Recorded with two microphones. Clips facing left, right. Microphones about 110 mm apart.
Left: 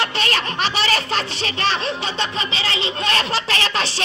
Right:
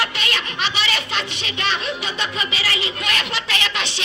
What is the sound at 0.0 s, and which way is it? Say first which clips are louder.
Snicker: left 3 dB; 40° left (ahead or behind).